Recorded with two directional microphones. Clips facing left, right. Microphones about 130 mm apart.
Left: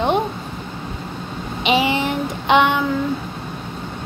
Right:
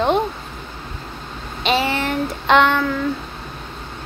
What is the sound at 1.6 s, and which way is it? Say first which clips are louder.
Child singing: left 1 dB; 15° left (ahead or behind).